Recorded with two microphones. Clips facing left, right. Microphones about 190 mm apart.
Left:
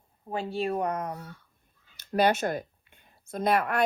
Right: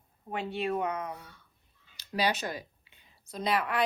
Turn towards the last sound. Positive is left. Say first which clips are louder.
# left 4 dB
turn(degrees=50)  # may be behind; listen again after turning